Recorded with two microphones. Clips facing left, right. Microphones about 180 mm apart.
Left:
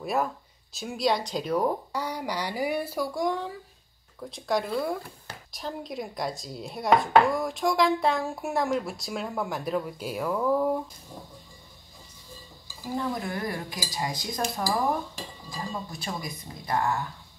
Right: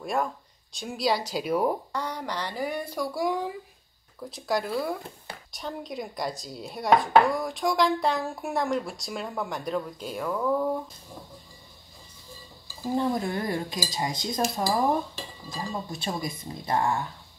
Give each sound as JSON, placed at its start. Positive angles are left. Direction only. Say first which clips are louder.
{"t": 0.0, "sound": "speech", "louder": "left 1 dB", "side_deg": 5}
{"t": 1.9, "sound": "speech", "louder": "left 1 dB", "side_deg": 10}
{"t": 3.1, "sound": "speech", "louder": "right 1 dB", "side_deg": -10}
{"t": 12.9, "sound": "speech", "louder": "right 4 dB", "side_deg": -25}